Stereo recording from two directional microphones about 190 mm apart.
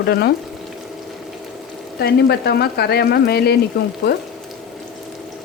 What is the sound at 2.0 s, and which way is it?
Speech, 55° left (ahead or behind).